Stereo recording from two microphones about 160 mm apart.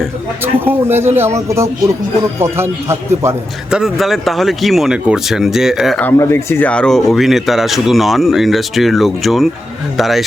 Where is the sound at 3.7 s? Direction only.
5° right (ahead or behind).